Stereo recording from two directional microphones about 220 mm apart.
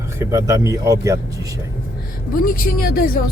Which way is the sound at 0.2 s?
15° right (ahead or behind).